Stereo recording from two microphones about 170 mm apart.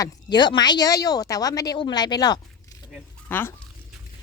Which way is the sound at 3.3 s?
10° left (ahead or behind).